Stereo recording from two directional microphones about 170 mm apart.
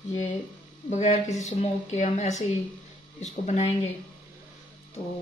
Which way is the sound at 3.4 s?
40° left (ahead or behind).